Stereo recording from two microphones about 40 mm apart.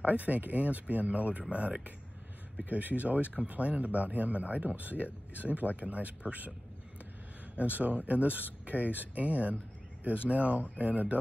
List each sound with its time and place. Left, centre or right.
0.0 s speech: right
7.5 s speech: right